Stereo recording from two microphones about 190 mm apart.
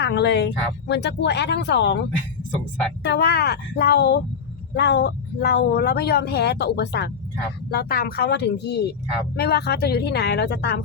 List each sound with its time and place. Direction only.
0.0 s speech: 65° left (ahead or behind)